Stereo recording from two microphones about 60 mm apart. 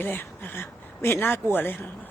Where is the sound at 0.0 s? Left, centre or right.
Left.